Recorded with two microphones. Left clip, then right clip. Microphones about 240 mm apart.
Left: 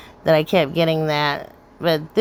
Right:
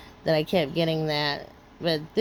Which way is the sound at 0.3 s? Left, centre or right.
Centre.